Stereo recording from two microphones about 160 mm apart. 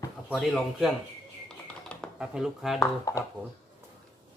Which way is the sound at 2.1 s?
5° right (ahead or behind).